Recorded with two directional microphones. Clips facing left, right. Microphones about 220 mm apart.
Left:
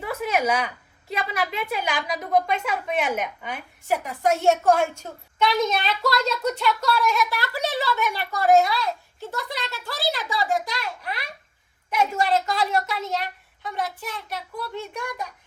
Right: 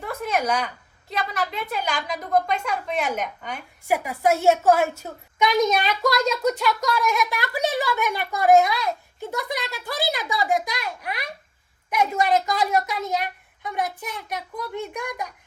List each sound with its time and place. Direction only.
0.0 s a sound: 5° left (ahead or behind)
1.1 s a woman's voice: 10° left (ahead or behind)
3.8 s a woman's voice: 10° right (ahead or behind)